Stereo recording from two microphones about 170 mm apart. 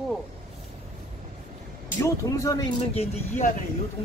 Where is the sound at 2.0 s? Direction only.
20° left (ahead or behind).